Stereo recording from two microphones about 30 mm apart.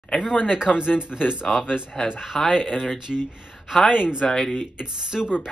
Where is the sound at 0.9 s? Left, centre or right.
Right.